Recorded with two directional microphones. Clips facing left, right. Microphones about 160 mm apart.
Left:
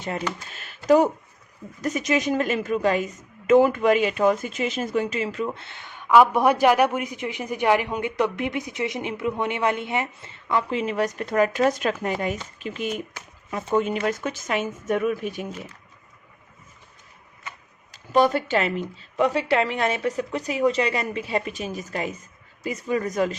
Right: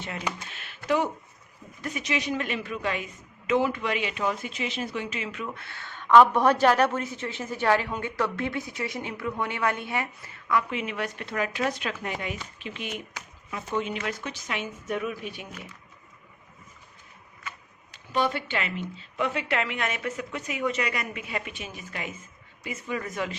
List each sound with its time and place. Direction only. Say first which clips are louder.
0.3 s computer keyboard: left 1 dB; 40° left (ahead or behind)
0.9 s a woman's voice: left 8 dB; 40° left (ahead or behind)
17.9 s a woman's voice: left 7 dB; 45° left (ahead or behind)